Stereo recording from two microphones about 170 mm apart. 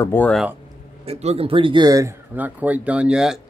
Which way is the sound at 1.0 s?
40° right (ahead or behind).